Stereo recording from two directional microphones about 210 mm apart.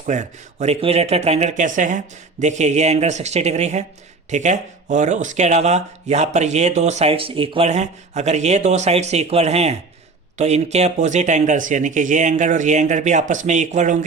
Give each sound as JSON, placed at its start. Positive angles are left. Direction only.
{"t": 0.0, "sound": "speech", "side_deg": -35}